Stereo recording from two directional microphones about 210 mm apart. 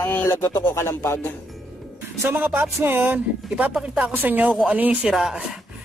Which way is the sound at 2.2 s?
10° right (ahead or behind).